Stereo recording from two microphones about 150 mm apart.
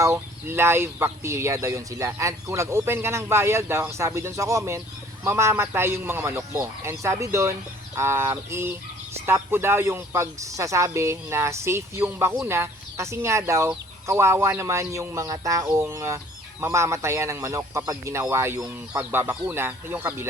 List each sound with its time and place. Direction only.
0.0 s speech: 15° right (ahead or behind)